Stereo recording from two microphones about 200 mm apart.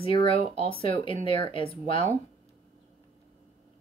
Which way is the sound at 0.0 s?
25° left (ahead or behind).